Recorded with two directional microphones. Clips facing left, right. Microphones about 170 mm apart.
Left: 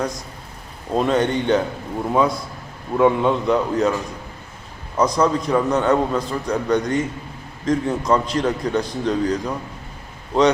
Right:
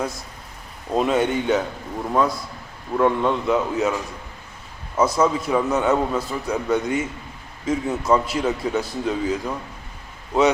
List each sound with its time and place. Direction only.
0.9 s a man's voice: 5° right (ahead or behind)
4.9 s a man's voice: 5° right (ahead or behind)